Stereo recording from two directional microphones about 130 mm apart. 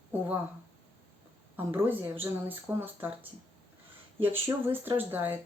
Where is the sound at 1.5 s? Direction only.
15° right (ahead or behind).